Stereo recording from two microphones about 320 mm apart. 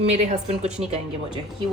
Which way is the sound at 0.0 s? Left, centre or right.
Right.